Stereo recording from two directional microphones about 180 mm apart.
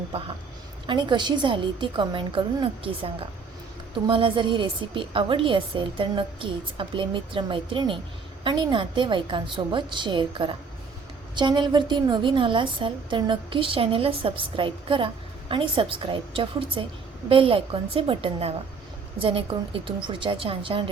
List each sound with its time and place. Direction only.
0.9 s a woman's voice: 25° right (ahead or behind)